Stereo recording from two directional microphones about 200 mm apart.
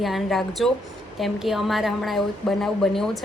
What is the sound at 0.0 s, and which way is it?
A woman's voice, centre (ahead or behind).